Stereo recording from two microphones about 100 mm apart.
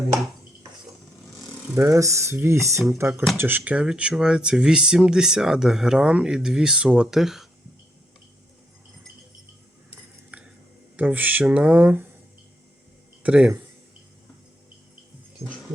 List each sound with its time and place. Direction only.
1.7 s speech: 30° right (ahead or behind); by 7.4 s 5° right (ahead or behind)
10.3 s a sound: 15° right (ahead or behind)
10.9 s speech: 15° right (ahead or behind)
13.2 s speech: 15° right (ahead or behind)